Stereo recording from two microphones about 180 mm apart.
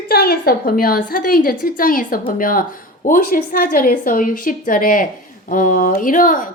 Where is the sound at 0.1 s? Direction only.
60° left (ahead or behind).